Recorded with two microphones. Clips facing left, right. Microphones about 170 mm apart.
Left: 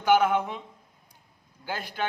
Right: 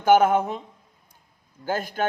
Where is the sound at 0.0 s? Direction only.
45° right (ahead or behind).